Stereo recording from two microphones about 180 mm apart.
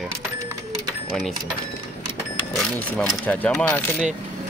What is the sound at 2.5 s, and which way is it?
Speech, 5° left (ahead or behind).